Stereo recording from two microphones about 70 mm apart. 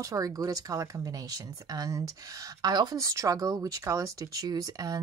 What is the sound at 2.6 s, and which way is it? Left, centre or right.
Speech, right.